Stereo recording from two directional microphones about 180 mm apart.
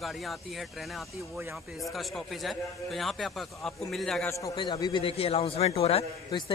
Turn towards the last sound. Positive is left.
turn(degrees=30)  # may be behind; listen again after turning